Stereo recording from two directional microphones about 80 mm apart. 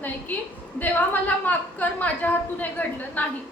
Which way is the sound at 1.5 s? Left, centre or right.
Left.